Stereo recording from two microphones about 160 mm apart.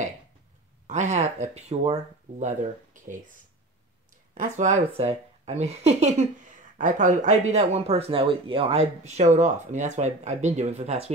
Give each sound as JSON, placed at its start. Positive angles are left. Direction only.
{"t": 0.8, "sound": "speech", "side_deg": -50}
{"t": 4.3, "sound": "speech", "side_deg": -50}